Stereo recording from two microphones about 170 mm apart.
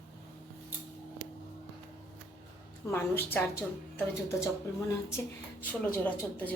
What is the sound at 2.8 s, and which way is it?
A woman's voice, 15° left (ahead or behind).